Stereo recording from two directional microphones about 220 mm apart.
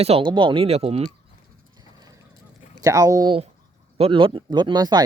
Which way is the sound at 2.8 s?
15° right (ahead or behind).